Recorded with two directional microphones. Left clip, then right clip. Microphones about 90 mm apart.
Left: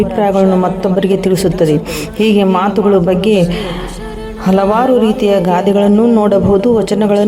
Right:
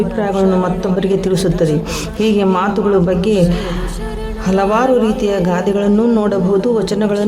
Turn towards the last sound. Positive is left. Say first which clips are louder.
# left 4 dB
turn(degrees=50)  # may be behind; listen again after turning